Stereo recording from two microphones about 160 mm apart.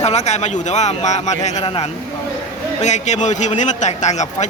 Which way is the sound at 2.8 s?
45° left (ahead or behind).